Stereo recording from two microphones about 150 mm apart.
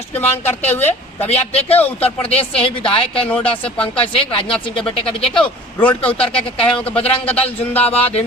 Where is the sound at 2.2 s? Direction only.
40° left (ahead or behind).